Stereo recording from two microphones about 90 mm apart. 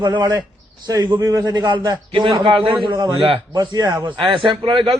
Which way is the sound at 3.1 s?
75° right (ahead or behind).